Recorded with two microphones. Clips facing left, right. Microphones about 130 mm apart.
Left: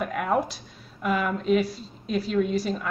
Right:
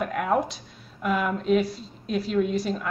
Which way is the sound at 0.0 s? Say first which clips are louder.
Right 1 dB; centre (ahead or behind).